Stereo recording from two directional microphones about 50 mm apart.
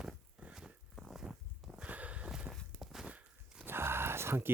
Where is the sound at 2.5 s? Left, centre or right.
Right.